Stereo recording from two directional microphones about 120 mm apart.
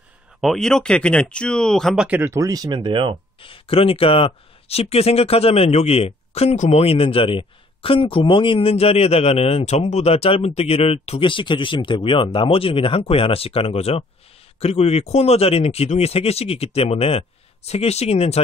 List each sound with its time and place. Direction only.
0.4 s speech: centre (ahead or behind)
2.0 s speech: 15° right (ahead or behind)
2.3 s speech: 30° right (ahead or behind)
3.3 s speech: 50° left (ahead or behind)